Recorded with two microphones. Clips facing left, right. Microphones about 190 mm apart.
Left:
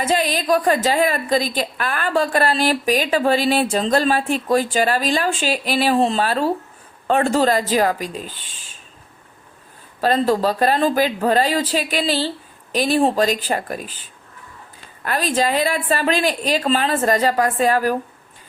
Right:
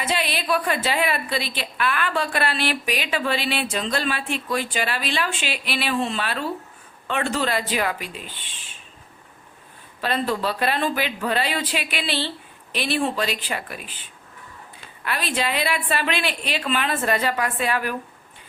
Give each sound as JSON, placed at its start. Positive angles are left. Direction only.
{"t": 0.0, "sound": "a woman's voice", "side_deg": 40}
{"t": 10.0, "sound": "a woman's voice", "side_deg": 40}
{"t": 15.0, "sound": "a woman's voice", "side_deg": 40}